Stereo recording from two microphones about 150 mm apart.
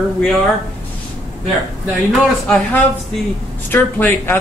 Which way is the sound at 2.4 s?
5° left (ahead or behind).